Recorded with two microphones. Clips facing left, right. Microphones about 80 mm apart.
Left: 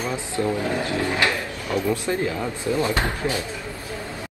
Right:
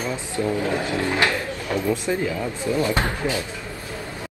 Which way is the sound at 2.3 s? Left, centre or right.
Left.